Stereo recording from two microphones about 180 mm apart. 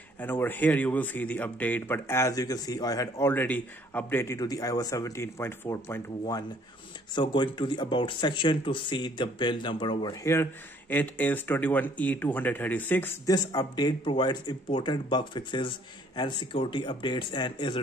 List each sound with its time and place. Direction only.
0.2 s speech: 10° left (ahead or behind); by 10.1 s 25° left (ahead or behind)
10.2 s speech: 15° left (ahead or behind)